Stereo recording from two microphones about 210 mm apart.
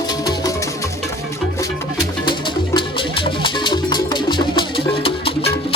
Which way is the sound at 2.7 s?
20° left (ahead or behind).